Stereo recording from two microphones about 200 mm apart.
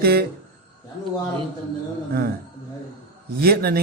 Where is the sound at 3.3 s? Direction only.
50° right (ahead or behind).